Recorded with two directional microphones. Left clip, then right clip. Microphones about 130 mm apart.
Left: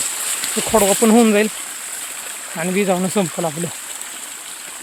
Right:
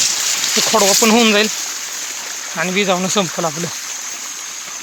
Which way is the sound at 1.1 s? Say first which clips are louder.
Right 2 dB; 25° left (ahead or behind).